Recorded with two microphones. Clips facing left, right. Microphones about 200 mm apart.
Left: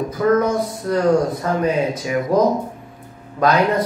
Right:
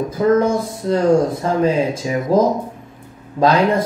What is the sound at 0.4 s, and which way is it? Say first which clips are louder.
Speech: right 2 dB; 25° right (ahead or behind).